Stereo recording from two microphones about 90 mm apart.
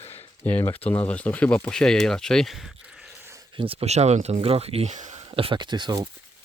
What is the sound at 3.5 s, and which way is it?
Speech, 90° right.